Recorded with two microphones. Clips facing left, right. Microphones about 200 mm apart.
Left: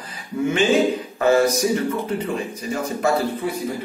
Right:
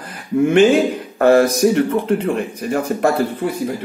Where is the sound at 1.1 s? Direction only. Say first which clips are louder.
Right 6 dB; 60° right (ahead or behind).